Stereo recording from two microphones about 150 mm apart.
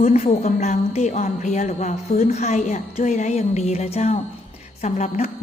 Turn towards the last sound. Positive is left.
turn(degrees=50)  # may be behind; listen again after turning